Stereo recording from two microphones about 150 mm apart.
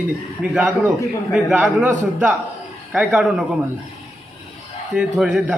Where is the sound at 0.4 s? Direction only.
10° right (ahead or behind).